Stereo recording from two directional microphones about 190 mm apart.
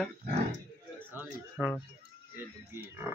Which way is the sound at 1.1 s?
5° right (ahead or behind).